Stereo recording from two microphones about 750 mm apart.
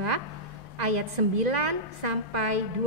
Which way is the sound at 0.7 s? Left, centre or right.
Right.